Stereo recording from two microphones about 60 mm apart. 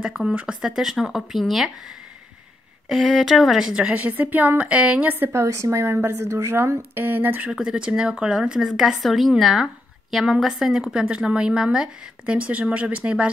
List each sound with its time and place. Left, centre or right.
0.2 s speech: centre
0.6 s speech: centre
2.9 s speech: centre
5.3 s a woman's voice: right
5.9 s speech: right
6.2 s speech: right
7.6 s speech: centre